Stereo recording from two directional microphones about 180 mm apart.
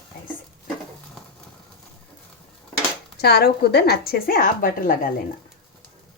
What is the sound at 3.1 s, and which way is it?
A woman's voice, 60° left (ahead or behind).